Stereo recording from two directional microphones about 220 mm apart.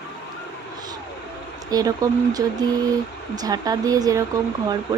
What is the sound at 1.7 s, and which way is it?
A woman's voice, 15° right (ahead or behind).